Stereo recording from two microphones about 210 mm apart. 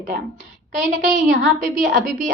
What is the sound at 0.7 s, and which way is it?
A woman's voice, 40° right (ahead or behind).